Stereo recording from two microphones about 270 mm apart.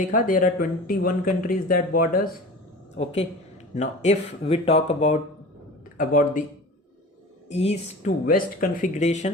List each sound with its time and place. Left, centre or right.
0.0 s speech: left
7.5 s speech: left